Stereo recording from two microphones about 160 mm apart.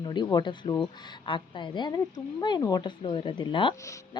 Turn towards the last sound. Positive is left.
turn(degrees=20)  # may be behind; listen again after turning